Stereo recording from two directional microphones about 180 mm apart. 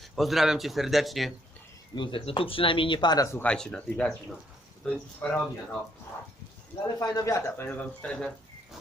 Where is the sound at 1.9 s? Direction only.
25° left (ahead or behind).